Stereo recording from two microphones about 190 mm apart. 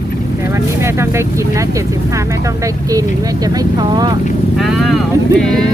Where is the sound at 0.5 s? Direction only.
15° right (ahead or behind).